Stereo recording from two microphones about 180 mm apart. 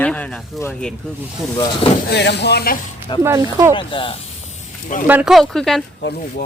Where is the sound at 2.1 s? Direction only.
70° left (ahead or behind).